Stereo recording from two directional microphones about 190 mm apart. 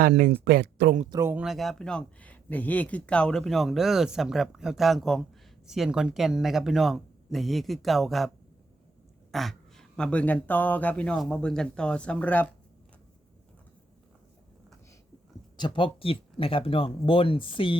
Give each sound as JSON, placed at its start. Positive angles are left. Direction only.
{"t": 0.0, "sound": "speech", "side_deg": -55}
{"t": 1.1, "sound": "speech", "side_deg": -10}
{"t": 9.3, "sound": "speech", "side_deg": 0}
{"t": 15.5, "sound": "speech", "side_deg": 25}